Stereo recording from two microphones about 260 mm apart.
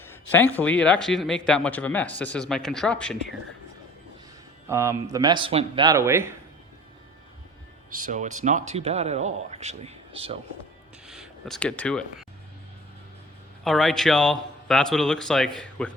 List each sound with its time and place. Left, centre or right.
0.3 s speech: centre
4.7 s speech: centre
7.9 s speech: right
11.0 s speech: centre
13.7 s speech: centre